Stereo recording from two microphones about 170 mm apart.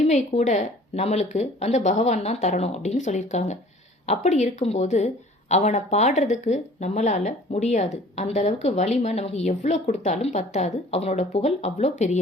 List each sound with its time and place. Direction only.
0.0 s a woman's voice: 40° left (ahead or behind)